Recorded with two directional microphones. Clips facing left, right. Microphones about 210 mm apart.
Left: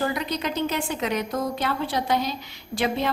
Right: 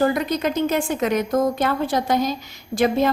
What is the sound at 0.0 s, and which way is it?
A woman's voice, 50° right (ahead or behind).